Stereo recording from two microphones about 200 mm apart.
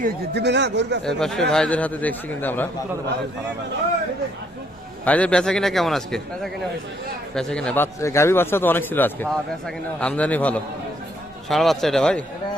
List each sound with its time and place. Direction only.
0.0 s a man's voice: 60° right (ahead or behind)
1.0 s a man's voice: 5° left (ahead or behind)
5.0 s a man's voice: 5° left (ahead or behind)